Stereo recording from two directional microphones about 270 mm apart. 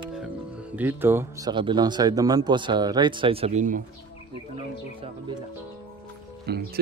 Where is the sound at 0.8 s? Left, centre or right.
Centre; by 3.8 s right.